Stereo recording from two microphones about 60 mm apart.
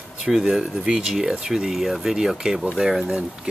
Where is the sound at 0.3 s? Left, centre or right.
Centre.